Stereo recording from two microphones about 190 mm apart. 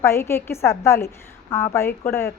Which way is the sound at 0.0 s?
15° left (ahead or behind).